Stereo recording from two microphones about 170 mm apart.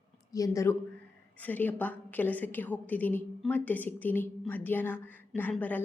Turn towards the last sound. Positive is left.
turn(degrees=10)  # may be behind; listen again after turning